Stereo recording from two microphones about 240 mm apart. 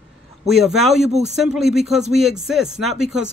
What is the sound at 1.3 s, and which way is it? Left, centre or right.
Speech, centre.